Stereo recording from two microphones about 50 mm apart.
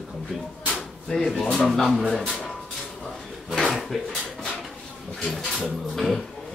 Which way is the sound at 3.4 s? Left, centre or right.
Centre.